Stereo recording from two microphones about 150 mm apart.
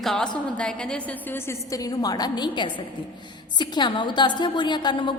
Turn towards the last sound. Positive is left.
turn(degrees=30)  # may be behind; listen again after turning